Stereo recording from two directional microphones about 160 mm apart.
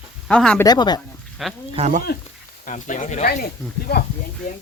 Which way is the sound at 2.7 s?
55° left (ahead or behind).